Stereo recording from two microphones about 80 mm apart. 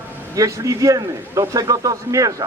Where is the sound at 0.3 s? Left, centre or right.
Right.